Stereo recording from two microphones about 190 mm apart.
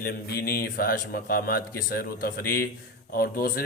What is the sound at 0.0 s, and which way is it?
Speech, 55° left (ahead or behind).